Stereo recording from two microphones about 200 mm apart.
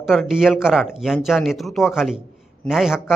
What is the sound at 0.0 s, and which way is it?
Speech, centre (ahead or behind).